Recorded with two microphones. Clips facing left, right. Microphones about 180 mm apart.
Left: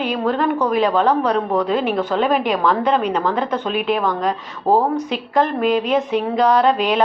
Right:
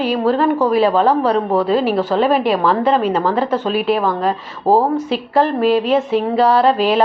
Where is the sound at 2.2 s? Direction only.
35° right (ahead or behind).